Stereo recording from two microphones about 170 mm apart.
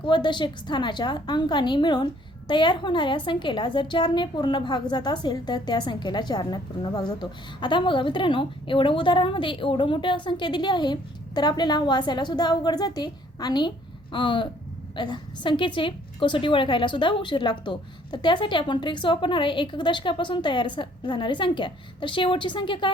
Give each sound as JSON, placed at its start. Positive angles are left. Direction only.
{"t": 0.0, "sound": "a woman's voice", "side_deg": 25}